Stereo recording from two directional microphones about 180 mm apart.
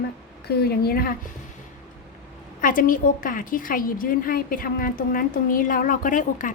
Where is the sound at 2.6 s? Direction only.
50° left (ahead or behind).